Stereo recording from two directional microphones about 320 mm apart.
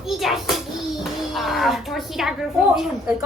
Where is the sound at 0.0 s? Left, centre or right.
Centre.